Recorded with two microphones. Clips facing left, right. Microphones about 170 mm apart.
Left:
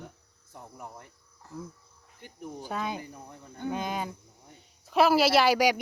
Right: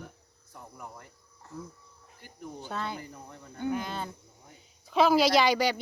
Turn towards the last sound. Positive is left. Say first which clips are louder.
# left 2 dB
turn(degrees=10)  # may be behind; listen again after turning